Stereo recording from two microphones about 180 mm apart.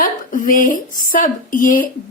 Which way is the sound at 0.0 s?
50° left (ahead or behind).